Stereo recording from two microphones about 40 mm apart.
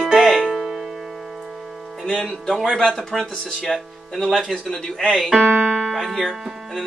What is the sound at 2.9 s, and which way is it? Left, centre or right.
Speech, centre.